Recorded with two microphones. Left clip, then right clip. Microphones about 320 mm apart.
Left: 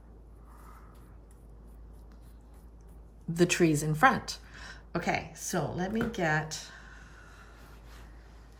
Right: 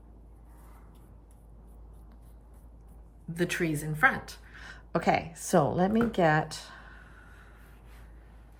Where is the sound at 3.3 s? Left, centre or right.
Centre.